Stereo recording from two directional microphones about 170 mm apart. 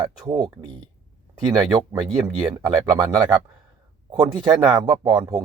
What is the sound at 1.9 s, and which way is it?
Speech, 20° right (ahead or behind).